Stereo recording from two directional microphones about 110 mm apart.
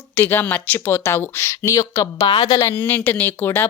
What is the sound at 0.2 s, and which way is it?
Speech, 20° left (ahead or behind).